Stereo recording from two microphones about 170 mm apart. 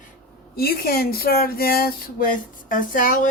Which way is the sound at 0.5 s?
65° left (ahead or behind).